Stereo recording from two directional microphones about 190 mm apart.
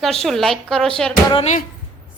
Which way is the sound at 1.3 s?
30° left (ahead or behind).